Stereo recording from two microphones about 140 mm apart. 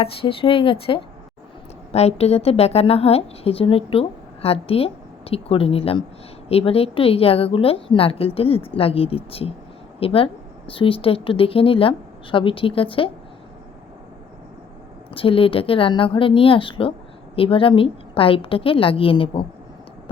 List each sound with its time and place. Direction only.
0.0 s a woman's voice: 40° left (ahead or behind)
15.1 s a woman's voice: 40° left (ahead or behind)